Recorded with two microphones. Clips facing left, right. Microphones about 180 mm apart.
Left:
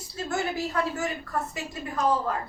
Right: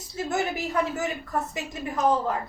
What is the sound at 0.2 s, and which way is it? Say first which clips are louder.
A woman's voice: right 1 dB; 20° right (ahead or behind).